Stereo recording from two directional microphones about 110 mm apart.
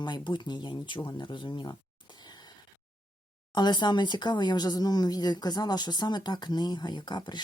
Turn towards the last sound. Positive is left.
turn(degrees=45)  # may be behind; listen again after turning